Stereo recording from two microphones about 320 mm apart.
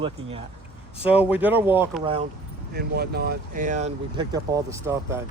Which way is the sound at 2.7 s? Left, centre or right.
Right.